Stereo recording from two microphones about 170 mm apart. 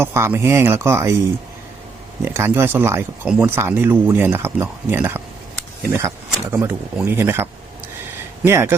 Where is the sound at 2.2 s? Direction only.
15° right (ahead or behind).